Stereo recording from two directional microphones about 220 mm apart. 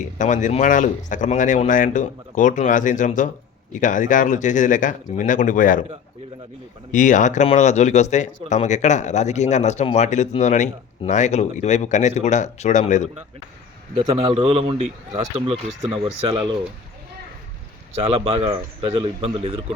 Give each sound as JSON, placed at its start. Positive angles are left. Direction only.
{"t": 0.2, "sound": "speech", "side_deg": 35}
{"t": 6.9, "sound": "speech", "side_deg": 35}
{"t": 13.9, "sound": "a man's voice", "side_deg": -25}
{"t": 18.0, "sound": "a man's voice", "side_deg": -25}